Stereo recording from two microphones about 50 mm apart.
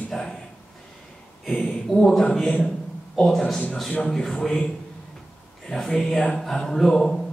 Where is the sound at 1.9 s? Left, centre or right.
Centre.